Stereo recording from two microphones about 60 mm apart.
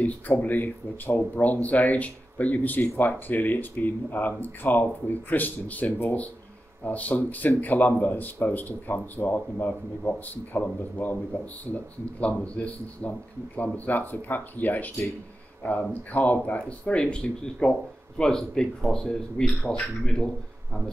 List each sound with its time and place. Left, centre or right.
0.4 s speech: left; by 20.2 s centre